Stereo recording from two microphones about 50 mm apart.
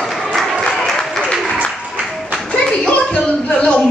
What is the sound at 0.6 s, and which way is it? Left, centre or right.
Applause, centre.